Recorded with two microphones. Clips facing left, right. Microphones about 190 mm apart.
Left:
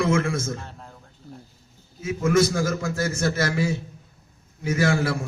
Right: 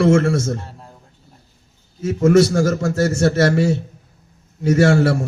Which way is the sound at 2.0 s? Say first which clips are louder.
Right 7 dB; 40° right (ahead or behind).